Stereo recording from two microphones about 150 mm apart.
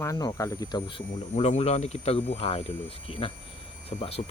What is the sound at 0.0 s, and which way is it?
Speech, 25° left (ahead or behind).